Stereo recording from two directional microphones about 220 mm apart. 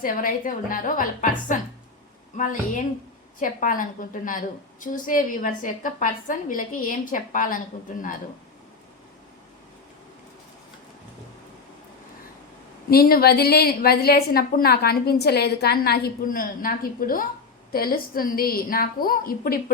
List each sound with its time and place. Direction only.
0.0 s a woman's voice: 40° left (ahead or behind)
12.9 s a woman's voice: 45° left (ahead or behind)